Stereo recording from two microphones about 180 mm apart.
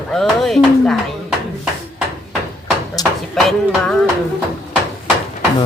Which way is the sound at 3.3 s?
Centre (ahead or behind).